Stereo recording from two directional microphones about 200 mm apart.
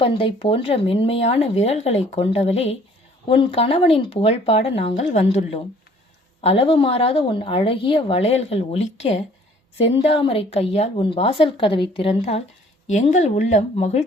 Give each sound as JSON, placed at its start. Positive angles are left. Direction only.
{"t": 0.0, "sound": "a woman's voice", "side_deg": 25}